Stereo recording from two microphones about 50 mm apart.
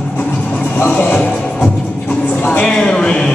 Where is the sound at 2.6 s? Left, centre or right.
Centre.